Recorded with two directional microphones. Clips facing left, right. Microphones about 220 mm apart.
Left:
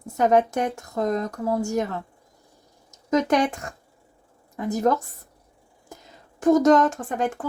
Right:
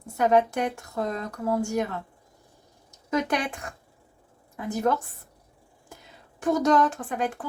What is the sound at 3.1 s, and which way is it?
A woman's voice, 45° left (ahead or behind).